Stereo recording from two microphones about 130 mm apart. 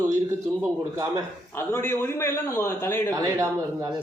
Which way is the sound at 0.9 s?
25° right (ahead or behind).